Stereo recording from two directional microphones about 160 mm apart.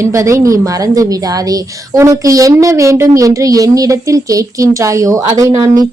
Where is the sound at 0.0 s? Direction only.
20° right (ahead or behind).